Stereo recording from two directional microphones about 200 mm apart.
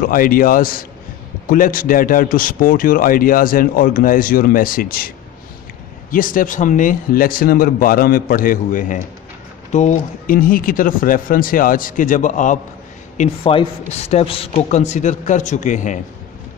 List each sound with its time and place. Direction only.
0.0 s a man's voice: 45° left (ahead or behind)
13.2 s a man's voice: 25° left (ahead or behind)